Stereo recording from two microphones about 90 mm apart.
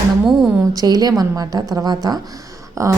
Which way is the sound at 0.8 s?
45° right (ahead or behind).